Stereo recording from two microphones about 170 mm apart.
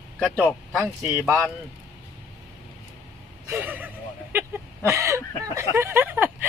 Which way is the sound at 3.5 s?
10° right (ahead or behind).